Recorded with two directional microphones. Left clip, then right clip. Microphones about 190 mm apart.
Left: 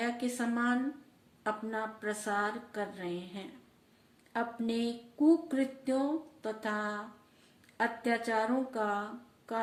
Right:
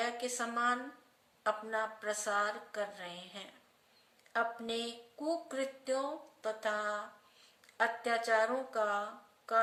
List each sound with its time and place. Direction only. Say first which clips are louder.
0.0 s a woman's voice: left 1 dB; 15° right (ahead or behind)